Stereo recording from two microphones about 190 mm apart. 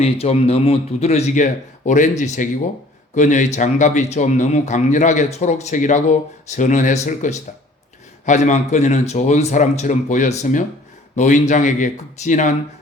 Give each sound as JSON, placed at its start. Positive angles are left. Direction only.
{"t": 0.0, "sound": "a man's voice", "side_deg": 35}